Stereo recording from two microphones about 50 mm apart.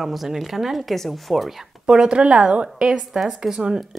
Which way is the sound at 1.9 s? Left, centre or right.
Centre.